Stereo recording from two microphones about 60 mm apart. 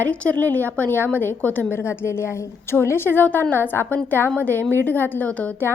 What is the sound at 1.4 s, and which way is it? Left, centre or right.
Speech, left.